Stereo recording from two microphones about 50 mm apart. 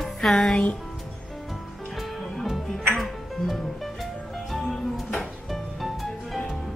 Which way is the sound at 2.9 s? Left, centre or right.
Centre.